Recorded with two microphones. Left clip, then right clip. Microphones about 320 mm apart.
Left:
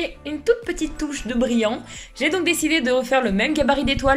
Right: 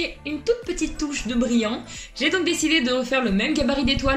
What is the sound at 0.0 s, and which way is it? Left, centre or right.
Speech, left.